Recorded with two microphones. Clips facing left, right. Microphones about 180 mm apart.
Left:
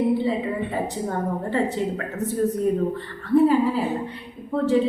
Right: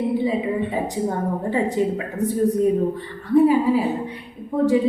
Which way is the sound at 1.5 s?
15° right (ahead or behind).